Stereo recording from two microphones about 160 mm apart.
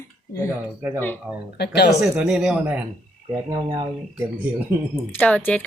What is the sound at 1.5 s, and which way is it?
Speech, 90° left.